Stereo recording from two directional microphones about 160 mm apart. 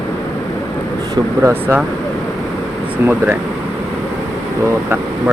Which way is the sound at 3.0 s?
15° right (ahead or behind).